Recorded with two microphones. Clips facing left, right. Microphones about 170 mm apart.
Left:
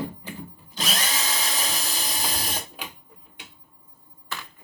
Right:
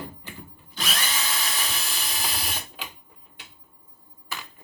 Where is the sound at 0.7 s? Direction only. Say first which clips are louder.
Left 2 dB; 40° left (ahead or behind).